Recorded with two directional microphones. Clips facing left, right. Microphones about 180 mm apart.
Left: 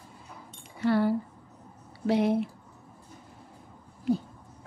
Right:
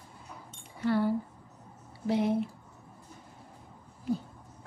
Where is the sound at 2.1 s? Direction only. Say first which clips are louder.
Left 3 dB; 75° left (ahead or behind).